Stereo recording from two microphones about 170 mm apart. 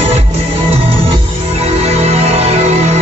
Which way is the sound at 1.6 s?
40° right (ahead or behind).